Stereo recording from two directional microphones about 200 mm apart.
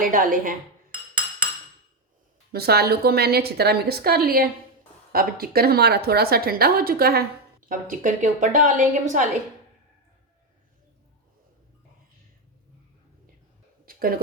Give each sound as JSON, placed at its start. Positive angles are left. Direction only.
{"t": 0.0, "sound": "a woman's voice", "side_deg": -45}
{"t": 2.5, "sound": "a woman's voice", "side_deg": -50}
{"t": 13.8, "sound": "a sound", "side_deg": -50}